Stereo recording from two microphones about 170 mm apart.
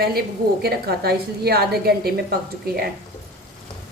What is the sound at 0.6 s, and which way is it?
A woman's voice, 65° right (ahead or behind).